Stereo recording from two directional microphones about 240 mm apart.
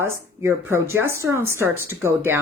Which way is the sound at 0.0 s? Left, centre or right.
Centre.